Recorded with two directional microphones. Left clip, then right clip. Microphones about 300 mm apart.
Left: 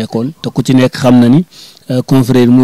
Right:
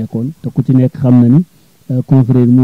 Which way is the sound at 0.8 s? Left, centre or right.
Centre.